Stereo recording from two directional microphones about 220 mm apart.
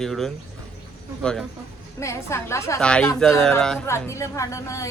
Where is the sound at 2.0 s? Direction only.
10° left (ahead or behind).